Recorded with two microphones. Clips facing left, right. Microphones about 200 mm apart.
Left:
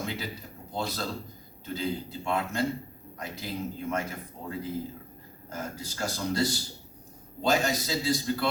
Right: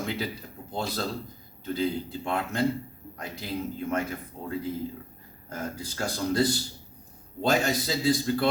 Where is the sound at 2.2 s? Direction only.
55° right (ahead or behind).